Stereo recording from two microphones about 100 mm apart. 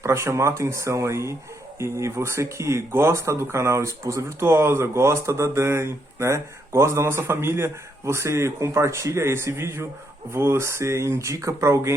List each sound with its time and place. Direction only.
0.0 s speech: 25° right (ahead or behind)